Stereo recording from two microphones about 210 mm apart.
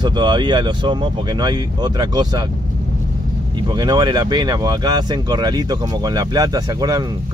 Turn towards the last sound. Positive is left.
turn(degrees=-20)  # may be behind; listen again after turning